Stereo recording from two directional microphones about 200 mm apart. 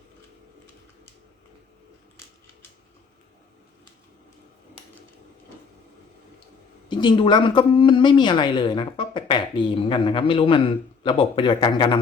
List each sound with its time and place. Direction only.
6.8 s a woman's voice: 25° left (ahead or behind)